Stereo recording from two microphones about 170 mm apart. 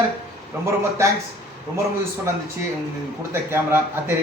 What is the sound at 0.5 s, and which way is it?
Speech, 15° right (ahead or behind).